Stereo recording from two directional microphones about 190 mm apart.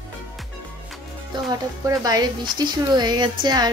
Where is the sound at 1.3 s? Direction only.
20° right (ahead or behind).